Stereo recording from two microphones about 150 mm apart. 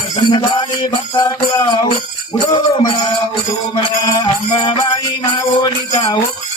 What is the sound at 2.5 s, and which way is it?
Mantra, 30° left (ahead or behind).